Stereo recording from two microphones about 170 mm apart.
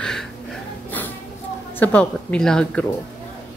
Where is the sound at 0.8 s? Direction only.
10° left (ahead or behind).